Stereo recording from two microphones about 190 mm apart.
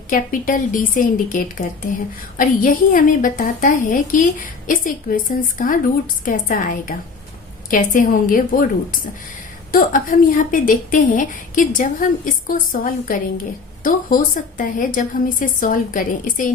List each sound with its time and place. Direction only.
0.1 s a woman's voice: 45° left (ahead or behind)
9.7 s a woman's voice: 45° left (ahead or behind)